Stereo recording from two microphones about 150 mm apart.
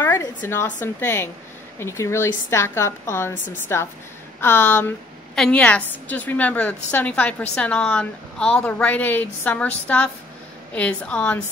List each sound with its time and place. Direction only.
0.0 s a woman's voice: 15° left (ahead or behind)